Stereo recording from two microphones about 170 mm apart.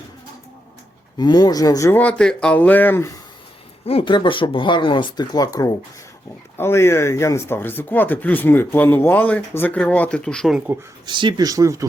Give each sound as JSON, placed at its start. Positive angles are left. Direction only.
{"t": 1.2, "sound": "speech", "side_deg": 25}
{"t": 3.8, "sound": "speech", "side_deg": 30}
{"t": 11.0, "sound": "speech", "side_deg": -30}